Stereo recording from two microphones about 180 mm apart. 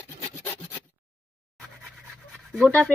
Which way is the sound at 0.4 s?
15° left (ahead or behind).